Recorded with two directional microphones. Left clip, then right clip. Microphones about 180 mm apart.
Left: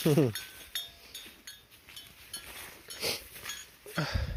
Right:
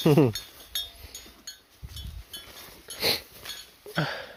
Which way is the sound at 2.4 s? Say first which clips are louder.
Right 1 dB; 5° right (ahead or behind).